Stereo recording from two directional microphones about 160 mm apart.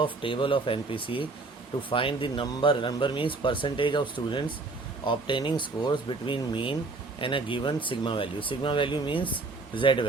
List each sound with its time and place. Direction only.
0.0 s speech: 30° left (ahead or behind)